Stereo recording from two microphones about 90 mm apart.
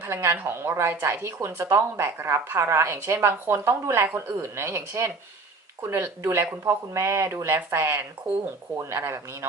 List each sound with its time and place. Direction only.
0.0 s speech: 25° right (ahead or behind)